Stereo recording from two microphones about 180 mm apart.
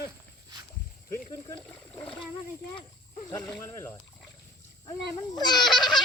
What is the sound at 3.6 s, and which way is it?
Speech, 15° left (ahead or behind).